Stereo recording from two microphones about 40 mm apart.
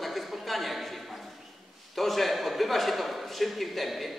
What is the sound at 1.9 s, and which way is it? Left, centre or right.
A man's voice, centre.